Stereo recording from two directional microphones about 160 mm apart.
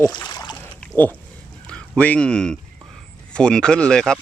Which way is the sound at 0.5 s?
10° left (ahead or behind).